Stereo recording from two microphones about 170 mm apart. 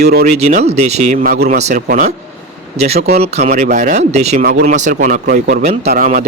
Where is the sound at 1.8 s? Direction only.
55° right (ahead or behind).